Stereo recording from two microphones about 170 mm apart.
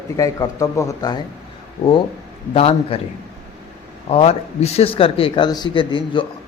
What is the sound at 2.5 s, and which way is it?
Speech, 35° left (ahead or behind).